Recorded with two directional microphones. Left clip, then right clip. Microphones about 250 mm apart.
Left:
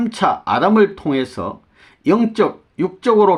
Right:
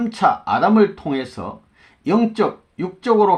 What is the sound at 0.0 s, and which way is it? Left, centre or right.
Speech, left.